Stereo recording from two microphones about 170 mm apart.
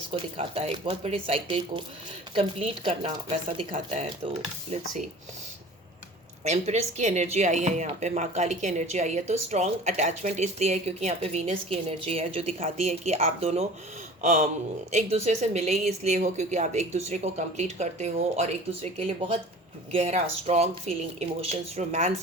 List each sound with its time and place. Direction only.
0.1 s speech: 35° right (ahead or behind)
6.4 s speech: 40° right (ahead or behind)
14.2 s a sound: 50° right (ahead or behind)
14.9 s speech: 40° right (ahead or behind)